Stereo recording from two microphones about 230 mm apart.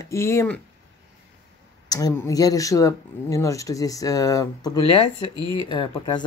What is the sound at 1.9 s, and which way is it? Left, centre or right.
Speech, centre.